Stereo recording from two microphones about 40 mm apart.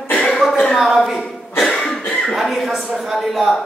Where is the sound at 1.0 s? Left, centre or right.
Centre.